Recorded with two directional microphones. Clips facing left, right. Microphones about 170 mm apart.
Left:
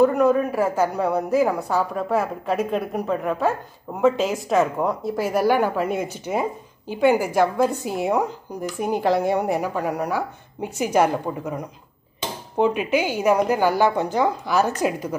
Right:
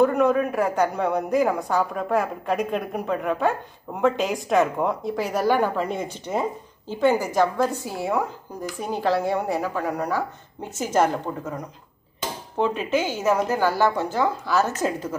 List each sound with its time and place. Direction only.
0.0 s a woman's voice: centre (ahead or behind)